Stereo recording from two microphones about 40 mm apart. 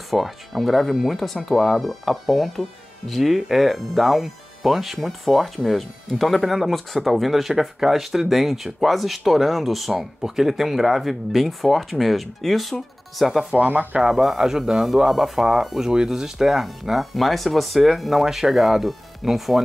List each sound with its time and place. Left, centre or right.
0.1 s speech: centre
13.6 s speech: right
14.0 s speech: centre